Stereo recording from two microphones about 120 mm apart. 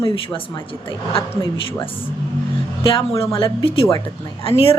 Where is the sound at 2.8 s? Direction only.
50° left (ahead or behind).